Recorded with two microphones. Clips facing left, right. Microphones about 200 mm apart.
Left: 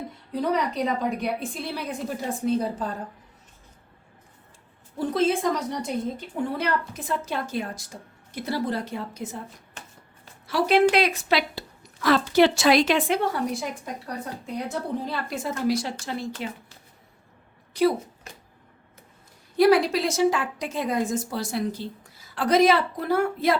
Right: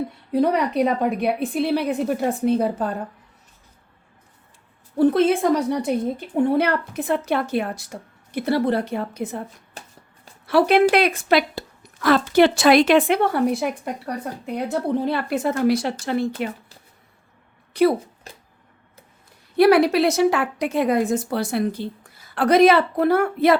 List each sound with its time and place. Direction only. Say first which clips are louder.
0.3 s a woman's voice: right 5 dB; 65° right (ahead or behind)
4.9 s a woman's voice: right 7 dB; 65° right (ahead or behind)
9.8 s shuffling cards: right 4 dB; 35° right (ahead or behind)
10.4 s a woman's voice: right 4 dB; 60° right (ahead or behind)
17.7 s a woman's voice: right 4 dB; 60° right (ahead or behind)
19.5 s a woman's voice: right 4 dB; 65° right (ahead or behind)